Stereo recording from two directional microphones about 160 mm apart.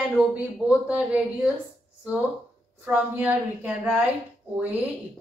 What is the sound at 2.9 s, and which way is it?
A woman's voice, 10° right (ahead or behind).